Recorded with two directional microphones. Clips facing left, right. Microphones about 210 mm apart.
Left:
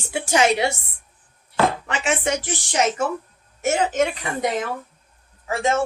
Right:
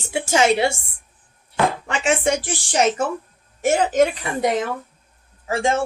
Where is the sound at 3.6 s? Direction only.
35° right (ahead or behind).